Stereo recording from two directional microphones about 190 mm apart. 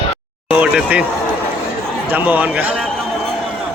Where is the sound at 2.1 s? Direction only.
10° right (ahead or behind).